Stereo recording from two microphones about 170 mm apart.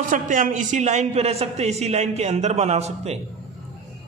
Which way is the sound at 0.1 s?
50° right (ahead or behind).